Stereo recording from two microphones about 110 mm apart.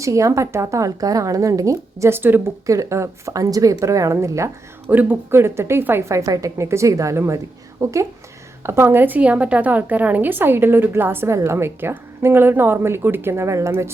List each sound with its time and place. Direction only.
0.0 s a woman's voice: 30° right (ahead or behind)
4.9 s a woman's voice: 15° right (ahead or behind)